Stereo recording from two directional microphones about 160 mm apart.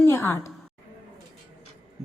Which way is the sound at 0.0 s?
15° left (ahead or behind).